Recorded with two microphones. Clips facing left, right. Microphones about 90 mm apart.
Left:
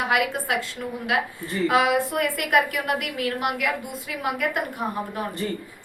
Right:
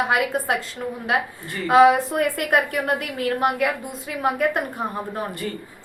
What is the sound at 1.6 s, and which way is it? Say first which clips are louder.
A woman's voice: right 6 dB; 30° right (ahead or behind).